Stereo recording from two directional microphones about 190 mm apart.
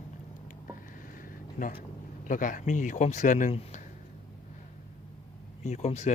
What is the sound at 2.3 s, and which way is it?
Speech, 45° left (ahead or behind).